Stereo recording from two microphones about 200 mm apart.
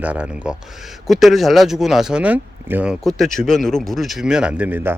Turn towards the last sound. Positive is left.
turn(degrees=-10)  # may be behind; listen again after turning